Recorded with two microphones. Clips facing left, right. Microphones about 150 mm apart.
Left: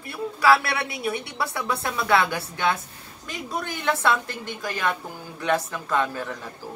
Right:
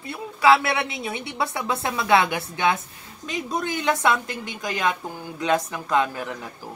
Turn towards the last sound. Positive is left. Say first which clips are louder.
# right 2 dB
turn(degrees=-15)  # may be behind; listen again after turning